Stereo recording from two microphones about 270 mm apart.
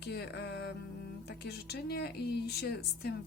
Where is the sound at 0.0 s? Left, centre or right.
Left.